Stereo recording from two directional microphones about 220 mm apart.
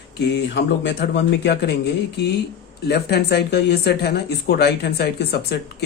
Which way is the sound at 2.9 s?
50° left (ahead or behind).